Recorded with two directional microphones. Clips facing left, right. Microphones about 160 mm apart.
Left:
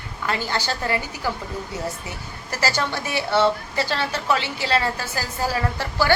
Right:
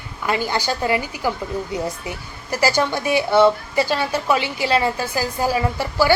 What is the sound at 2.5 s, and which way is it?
A woman's voice, 15° right (ahead or behind).